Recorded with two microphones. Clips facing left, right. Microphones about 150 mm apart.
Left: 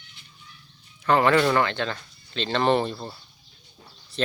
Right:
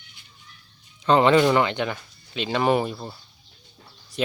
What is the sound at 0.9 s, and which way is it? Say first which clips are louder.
Speech: right 3 dB; 20° right (ahead or behind).